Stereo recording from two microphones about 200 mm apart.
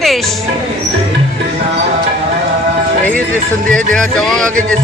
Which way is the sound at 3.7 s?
5° left (ahead or behind).